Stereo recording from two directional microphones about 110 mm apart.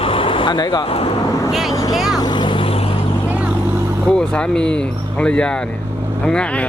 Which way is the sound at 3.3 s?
10° right (ahead or behind).